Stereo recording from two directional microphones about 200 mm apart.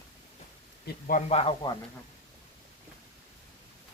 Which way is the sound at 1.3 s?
30° left (ahead or behind).